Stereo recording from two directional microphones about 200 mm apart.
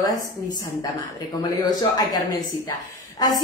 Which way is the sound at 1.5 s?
20° left (ahead or behind).